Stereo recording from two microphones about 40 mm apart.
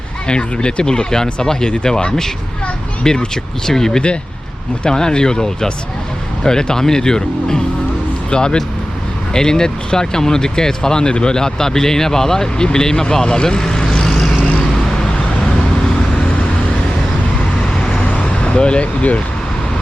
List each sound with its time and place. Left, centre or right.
0.3 s speech: left
16.2 s vehicle: left
18.0 s vehicle: left